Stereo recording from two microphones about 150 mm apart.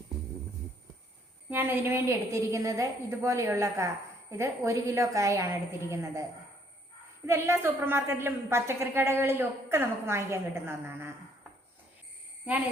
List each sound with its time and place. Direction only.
1.5 s a woman's voice: 10° right (ahead or behind)
7.3 s a woman's voice: 20° right (ahead or behind)